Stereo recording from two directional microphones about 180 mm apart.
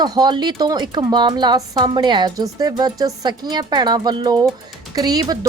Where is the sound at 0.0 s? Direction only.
25° right (ahead or behind).